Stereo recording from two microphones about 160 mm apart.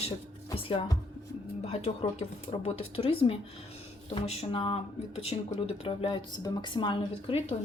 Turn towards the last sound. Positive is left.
turn(degrees=35)  # may be behind; listen again after turning